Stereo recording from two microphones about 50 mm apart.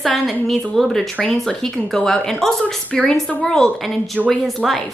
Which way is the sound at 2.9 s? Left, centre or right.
Left.